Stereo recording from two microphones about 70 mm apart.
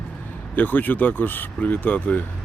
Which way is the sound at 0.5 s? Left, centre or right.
Left.